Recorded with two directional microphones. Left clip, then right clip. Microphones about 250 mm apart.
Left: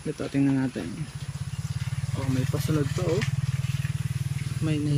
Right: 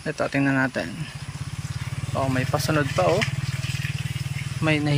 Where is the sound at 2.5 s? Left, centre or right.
Right.